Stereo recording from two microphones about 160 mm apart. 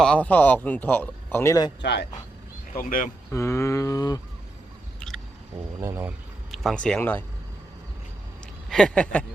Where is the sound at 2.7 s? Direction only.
60° left (ahead or behind).